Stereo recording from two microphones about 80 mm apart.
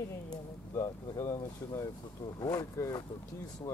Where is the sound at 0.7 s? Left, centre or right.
Left.